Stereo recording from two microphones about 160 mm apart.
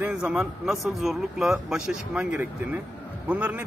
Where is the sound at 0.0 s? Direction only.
5° right (ahead or behind).